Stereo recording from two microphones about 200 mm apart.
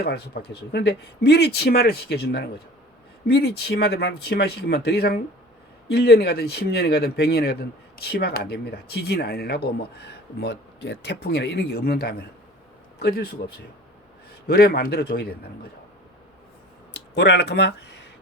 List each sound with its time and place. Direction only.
0.0 s speech: 50° left (ahead or behind)
14.4 s speech: 50° left (ahead or behind)
16.9 s speech: 60° left (ahead or behind)